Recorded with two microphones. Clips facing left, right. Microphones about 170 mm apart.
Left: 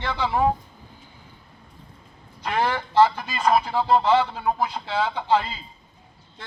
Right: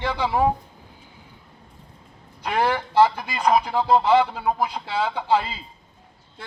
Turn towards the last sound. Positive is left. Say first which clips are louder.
# even
turn(degrees=-10)  # may be behind; listen again after turning